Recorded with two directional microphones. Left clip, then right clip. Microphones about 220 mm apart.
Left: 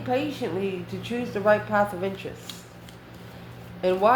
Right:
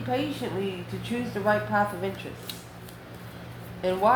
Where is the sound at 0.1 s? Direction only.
50° left (ahead or behind).